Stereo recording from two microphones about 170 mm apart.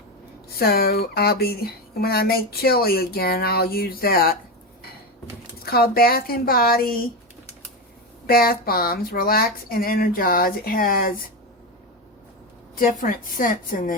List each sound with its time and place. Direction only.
0.4 s speech: 65° left (ahead or behind)
5.6 s speech: 65° left (ahead or behind)
8.3 s speech: 60° left (ahead or behind)
12.7 s a woman's voice: 50° left (ahead or behind)